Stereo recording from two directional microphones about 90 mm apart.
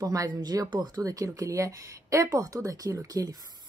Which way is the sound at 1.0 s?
40° right (ahead or behind).